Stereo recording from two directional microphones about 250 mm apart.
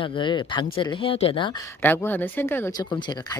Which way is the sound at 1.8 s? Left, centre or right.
Centre.